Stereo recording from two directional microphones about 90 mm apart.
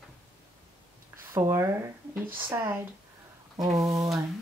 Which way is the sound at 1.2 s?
30° right (ahead or behind).